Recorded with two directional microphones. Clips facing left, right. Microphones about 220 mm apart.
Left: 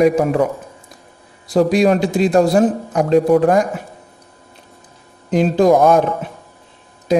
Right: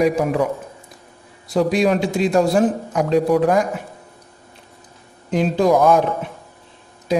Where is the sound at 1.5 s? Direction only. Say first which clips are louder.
Left 4 dB; 40° left (ahead or behind).